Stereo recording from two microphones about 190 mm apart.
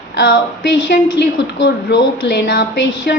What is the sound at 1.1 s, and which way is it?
Speech, 70° left (ahead or behind).